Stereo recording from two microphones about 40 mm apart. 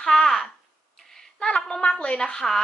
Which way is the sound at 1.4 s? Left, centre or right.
Centre.